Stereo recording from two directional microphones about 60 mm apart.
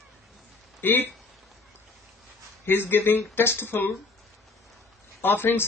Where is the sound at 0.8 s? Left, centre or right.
Left.